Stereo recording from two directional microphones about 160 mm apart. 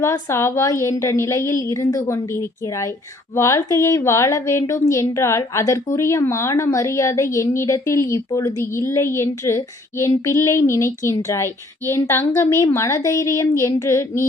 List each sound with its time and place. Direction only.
0.0 s a woman's voice: 15° left (ahead or behind)